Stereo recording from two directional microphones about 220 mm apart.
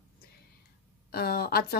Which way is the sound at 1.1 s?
45° left (ahead or behind).